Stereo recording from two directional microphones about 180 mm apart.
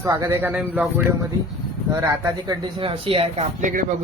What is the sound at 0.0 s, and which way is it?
Speech, 15° right (ahead or behind).